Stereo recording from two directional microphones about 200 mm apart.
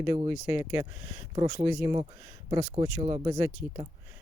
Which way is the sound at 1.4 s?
30° right (ahead or behind).